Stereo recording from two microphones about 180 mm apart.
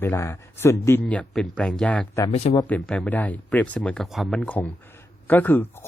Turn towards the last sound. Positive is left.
turn(degrees=10)  # may be behind; listen again after turning